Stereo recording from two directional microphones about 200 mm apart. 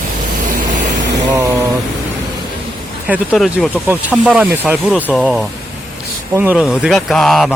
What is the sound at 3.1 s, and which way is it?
Speech, centre (ahead or behind).